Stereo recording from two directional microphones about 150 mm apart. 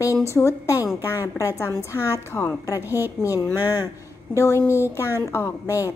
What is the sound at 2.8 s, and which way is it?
Speech, 15° right (ahead or behind).